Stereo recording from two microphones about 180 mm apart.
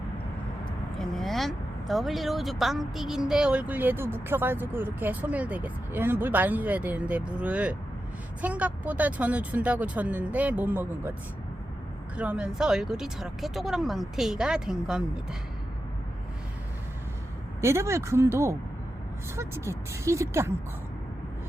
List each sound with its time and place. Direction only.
0.9 s speech: centre (ahead or behind)
12.1 s speech: 5° right (ahead or behind)
17.6 s speech: 15° right (ahead or behind)